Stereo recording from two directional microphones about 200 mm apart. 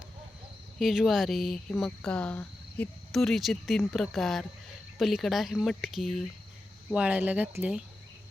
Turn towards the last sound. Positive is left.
turn(degrees=-10)  # may be behind; listen again after turning